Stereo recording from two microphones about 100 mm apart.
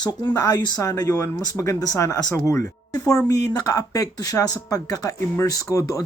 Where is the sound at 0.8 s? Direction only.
35° left (ahead or behind).